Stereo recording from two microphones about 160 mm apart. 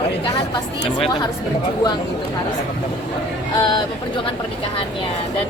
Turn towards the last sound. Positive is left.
turn(degrees=30)  # may be behind; listen again after turning